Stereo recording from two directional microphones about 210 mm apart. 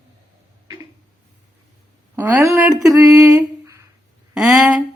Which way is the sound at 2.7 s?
15° right (ahead or behind).